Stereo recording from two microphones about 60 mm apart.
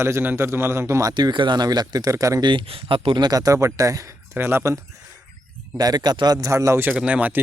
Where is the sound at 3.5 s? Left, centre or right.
Right.